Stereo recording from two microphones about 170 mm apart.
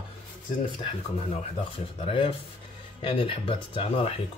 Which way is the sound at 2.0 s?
30° left (ahead or behind).